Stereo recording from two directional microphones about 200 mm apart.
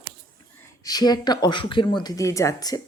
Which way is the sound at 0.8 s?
20° left (ahead or behind).